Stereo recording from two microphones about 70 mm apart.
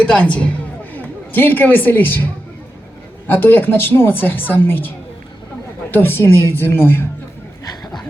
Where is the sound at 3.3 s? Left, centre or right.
Left.